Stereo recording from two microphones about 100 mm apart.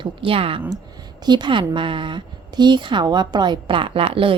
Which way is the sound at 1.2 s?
50° right (ahead or behind).